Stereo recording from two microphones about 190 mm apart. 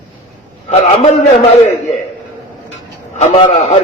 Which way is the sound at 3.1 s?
35° left (ahead or behind).